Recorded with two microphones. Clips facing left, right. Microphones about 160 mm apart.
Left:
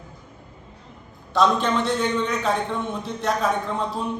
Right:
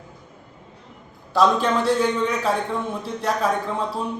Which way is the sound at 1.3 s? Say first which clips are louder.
Right 1 dB; 5° right (ahead or behind).